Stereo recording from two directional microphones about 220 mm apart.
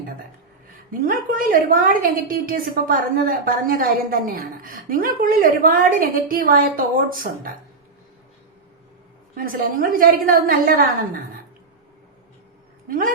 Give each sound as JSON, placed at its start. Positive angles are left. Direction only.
{"t": 0.9, "sound": "a woman's voice", "side_deg": -40}
{"t": 9.4, "sound": "a woman's voice", "side_deg": -40}